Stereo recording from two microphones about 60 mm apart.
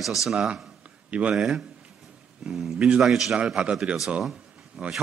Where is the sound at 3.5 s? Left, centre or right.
Centre.